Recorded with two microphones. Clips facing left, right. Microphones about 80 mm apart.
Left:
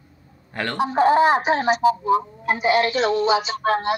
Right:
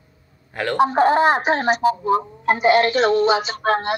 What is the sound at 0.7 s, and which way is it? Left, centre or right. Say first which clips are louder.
Speech: right 1 dB; right.